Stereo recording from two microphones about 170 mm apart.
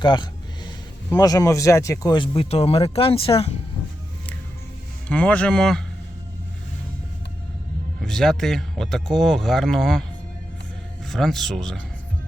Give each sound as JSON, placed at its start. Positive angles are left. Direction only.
{"t": 0.0, "sound": "a sound", "side_deg": 25}
{"t": 1.1, "sound": "speech", "side_deg": 20}
{"t": 5.0, "sound": "speech", "side_deg": 10}
{"t": 8.0, "sound": "speech", "side_deg": 5}
{"t": 11.1, "sound": "speech", "side_deg": 0}